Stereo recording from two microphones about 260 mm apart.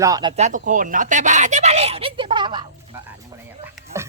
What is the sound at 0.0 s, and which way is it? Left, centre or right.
Speech, centre.